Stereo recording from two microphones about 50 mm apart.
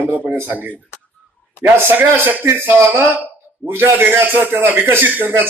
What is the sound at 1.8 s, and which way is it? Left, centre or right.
A man's voice, right.